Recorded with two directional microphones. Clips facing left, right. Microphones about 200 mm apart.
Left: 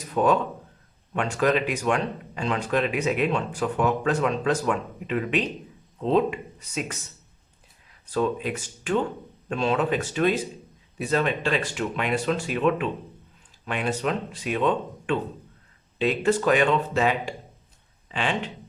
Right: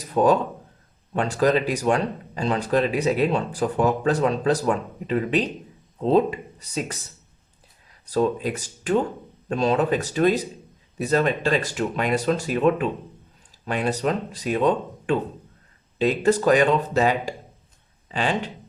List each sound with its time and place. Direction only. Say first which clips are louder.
0.1 s speech: right 3 dB; 35° right (ahead or behind)
8.0 s speech: right 3 dB; 40° right (ahead or behind)